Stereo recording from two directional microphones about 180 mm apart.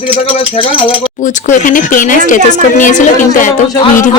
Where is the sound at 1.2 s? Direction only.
45° left (ahead or behind).